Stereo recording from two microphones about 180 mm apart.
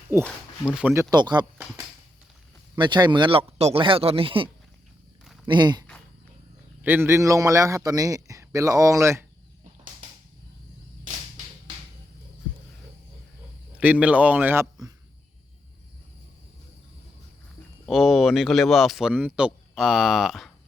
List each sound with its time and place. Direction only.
0.1 s a man's voice: 15° right (ahead or behind)
1.1 s a man's voice: 25° right (ahead or behind)
2.7 s a man's voice: 25° right (ahead or behind)
5.5 s a man's voice: 25° right (ahead or behind)
6.8 s a man's voice: 10° right (ahead or behind)
13.7 s a man's voice: 5° right (ahead or behind)
17.8 s speech: centre (ahead or behind)